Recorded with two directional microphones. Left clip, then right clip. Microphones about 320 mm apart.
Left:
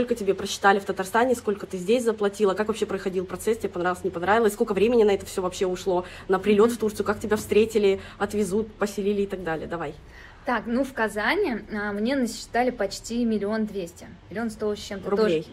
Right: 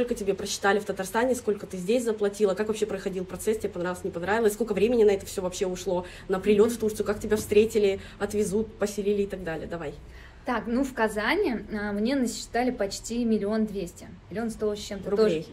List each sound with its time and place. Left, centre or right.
0.0 s speech: centre
10.4 s a woman's voice: centre